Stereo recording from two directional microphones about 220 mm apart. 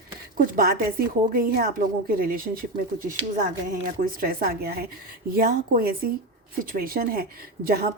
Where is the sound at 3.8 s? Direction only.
40° right (ahead or behind).